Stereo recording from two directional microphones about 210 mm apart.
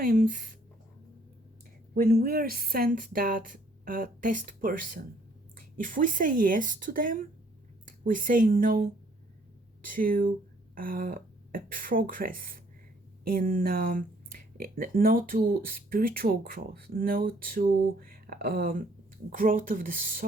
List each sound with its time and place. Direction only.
0.0 s speech: 40° right (ahead or behind)
2.0 s a woman's voice: 45° right (ahead or behind)